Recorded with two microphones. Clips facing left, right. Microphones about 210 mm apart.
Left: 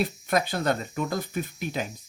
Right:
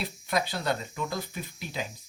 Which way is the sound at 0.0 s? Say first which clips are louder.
Left 5 dB; 50° left (ahead or behind).